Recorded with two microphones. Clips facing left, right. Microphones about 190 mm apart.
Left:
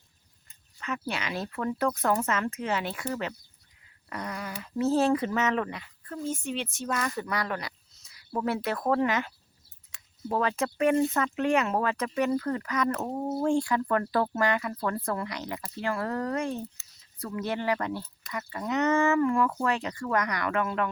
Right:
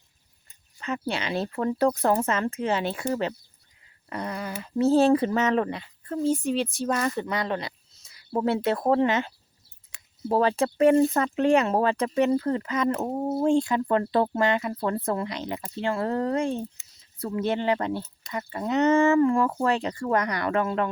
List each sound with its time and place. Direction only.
0.4 s speech: 30° right (ahead or behind)